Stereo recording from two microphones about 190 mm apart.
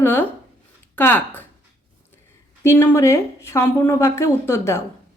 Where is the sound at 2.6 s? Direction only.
15° left (ahead or behind).